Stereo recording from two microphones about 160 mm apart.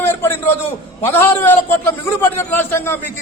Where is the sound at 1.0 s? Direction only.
15° left (ahead or behind).